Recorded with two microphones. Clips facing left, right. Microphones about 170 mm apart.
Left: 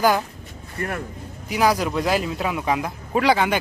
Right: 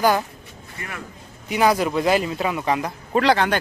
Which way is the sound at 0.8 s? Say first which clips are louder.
Left 7 dB; 50° left (ahead or behind).